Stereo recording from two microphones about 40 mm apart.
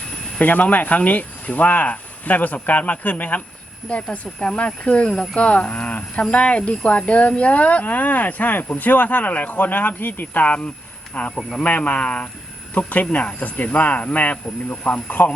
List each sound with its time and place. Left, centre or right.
0.3 s speech: left
4.4 s speech: left
5.0 s speech: centre
5.4 s speech: left
5.9 s a sound: left
6.3 s speech: left
11.1 s speech: left